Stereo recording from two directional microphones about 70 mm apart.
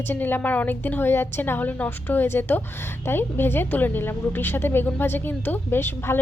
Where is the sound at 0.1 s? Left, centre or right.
Left.